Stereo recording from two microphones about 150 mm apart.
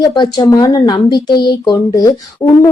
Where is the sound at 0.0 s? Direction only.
30° left (ahead or behind).